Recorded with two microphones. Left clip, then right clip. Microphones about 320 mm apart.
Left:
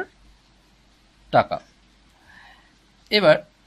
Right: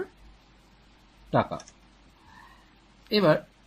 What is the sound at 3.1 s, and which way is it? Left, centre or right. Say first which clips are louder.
Speech: left 6 dB; left.